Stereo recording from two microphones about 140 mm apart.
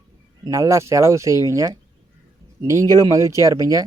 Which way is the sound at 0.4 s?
25° right (ahead or behind).